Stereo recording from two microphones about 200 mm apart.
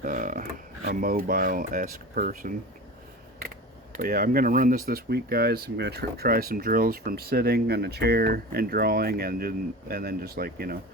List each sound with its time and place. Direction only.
0.0 s a sound: 40° right (ahead or behind)
0.9 s speech: 45° right (ahead or behind)
3.9 s speech: 45° right (ahead or behind)